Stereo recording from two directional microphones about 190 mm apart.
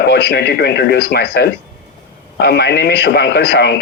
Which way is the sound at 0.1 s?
60° left (ahead or behind).